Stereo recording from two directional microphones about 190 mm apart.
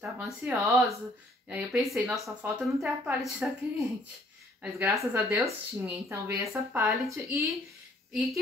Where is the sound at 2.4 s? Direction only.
10° right (ahead or behind).